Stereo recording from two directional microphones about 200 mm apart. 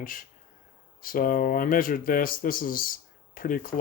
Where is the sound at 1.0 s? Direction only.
45° left (ahead or behind).